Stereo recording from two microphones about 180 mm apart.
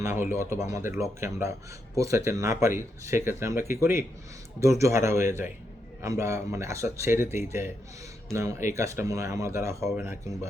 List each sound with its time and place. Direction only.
0.0 s speech: 15° right (ahead or behind)